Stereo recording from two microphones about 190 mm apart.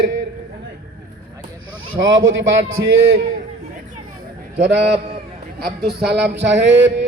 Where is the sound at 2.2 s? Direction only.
85° right.